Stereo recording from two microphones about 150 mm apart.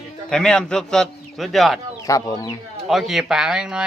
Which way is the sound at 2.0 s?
20° left (ahead or behind).